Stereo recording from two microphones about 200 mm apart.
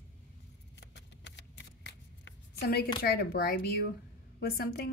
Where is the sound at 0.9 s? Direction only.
60° left (ahead or behind).